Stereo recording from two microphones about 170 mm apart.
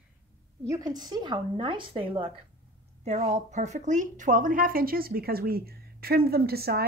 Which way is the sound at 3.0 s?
40° right (ahead or behind).